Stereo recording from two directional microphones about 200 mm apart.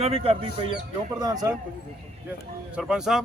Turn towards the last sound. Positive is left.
turn(degrees=-5)  # may be behind; listen again after turning